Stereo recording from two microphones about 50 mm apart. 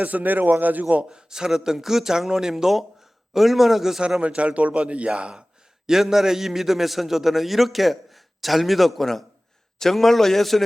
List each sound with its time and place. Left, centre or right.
0.0 s a man's voice: right
1.1 s a man's voice: centre
4.2 s a man's voice: right; by 10.6 s centre